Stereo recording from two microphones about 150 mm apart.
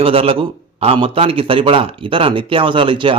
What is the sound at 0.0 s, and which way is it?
A man's voice, 40° right (ahead or behind).